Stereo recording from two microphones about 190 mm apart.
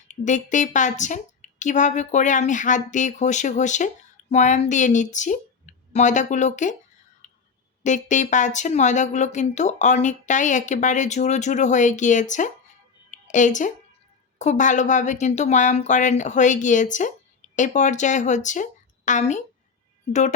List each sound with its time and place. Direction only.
0.1 s a woman's voice: 40° left (ahead or behind)
7.9 s a woman's voice: 40° left (ahead or behind)
13.1 s a sound: 40° left (ahead or behind)
14.3 s a woman's voice: 40° left (ahead or behind)